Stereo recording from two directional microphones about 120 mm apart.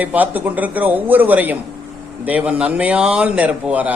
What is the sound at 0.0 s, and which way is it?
A man's voice, 15° right (ahead or behind).